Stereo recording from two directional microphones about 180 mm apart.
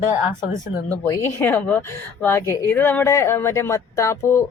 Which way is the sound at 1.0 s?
15° left (ahead or behind).